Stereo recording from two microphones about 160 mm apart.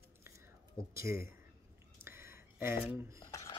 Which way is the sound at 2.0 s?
15° right (ahead or behind).